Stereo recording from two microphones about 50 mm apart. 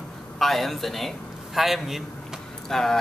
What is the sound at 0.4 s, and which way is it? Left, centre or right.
A man's voice, centre.